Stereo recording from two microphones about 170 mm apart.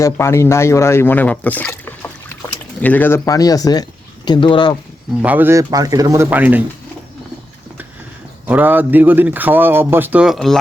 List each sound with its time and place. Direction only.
0.0 s speech: 15° left (ahead or behind)
5.2 s a man's voice: 10° right (ahead or behind)
8.4 s a man's voice: 10° right (ahead or behind)